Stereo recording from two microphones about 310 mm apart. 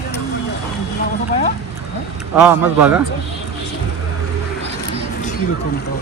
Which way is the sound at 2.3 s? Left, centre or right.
Centre.